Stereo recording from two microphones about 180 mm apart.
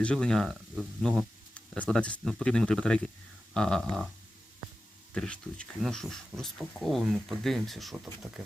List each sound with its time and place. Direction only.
0.0 s speech: 5° left (ahead or behind)
5.1 s speech: 5° left (ahead or behind)